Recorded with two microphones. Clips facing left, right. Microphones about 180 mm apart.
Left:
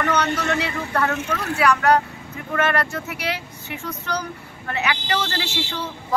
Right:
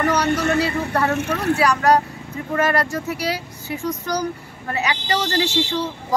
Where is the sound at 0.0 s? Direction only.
35° right (ahead or behind).